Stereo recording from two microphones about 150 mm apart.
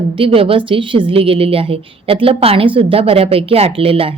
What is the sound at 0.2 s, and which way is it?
A woman's voice, 35° right (ahead or behind).